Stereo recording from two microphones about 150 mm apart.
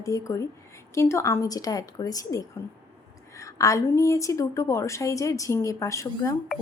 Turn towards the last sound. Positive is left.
turn(degrees=20)  # may be behind; listen again after turning